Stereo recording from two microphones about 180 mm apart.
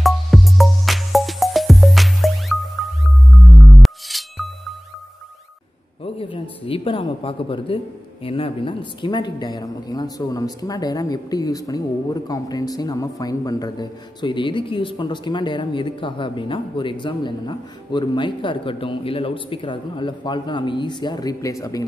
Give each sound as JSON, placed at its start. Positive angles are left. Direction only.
{"t": 0.0, "sound": "music", "side_deg": 0}
{"t": 6.6, "sound": "speech", "side_deg": 30}